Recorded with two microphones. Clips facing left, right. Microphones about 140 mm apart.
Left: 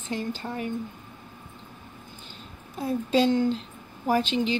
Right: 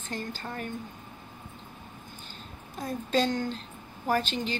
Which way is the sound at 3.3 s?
25° left (ahead or behind).